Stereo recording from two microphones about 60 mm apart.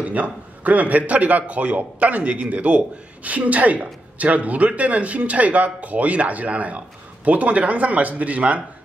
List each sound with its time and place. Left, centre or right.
0.0 s speech: right